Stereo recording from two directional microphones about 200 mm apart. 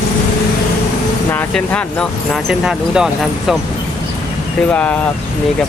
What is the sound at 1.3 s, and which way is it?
Speech, 10° left (ahead or behind).